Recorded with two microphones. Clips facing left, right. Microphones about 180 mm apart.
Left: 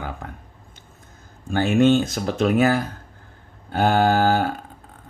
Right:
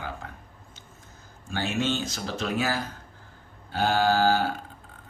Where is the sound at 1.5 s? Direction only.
55° left (ahead or behind).